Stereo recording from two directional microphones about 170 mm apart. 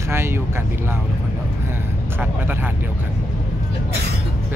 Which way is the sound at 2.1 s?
10° right (ahead or behind).